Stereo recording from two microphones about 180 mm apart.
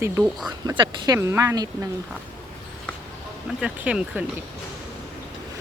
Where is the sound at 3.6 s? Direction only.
5° right (ahead or behind).